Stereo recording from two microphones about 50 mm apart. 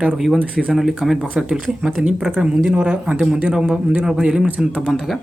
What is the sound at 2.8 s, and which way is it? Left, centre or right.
A man's voice, centre.